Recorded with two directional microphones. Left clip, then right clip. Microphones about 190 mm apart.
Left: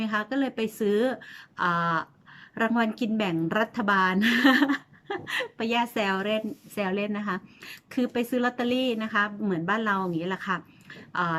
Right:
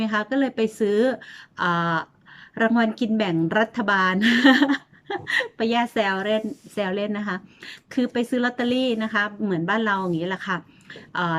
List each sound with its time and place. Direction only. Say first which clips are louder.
0.0 s a woman's voice: right 5 dB; centre (ahead or behind)